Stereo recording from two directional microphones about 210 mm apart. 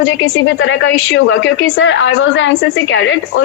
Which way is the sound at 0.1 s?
65° left (ahead or behind).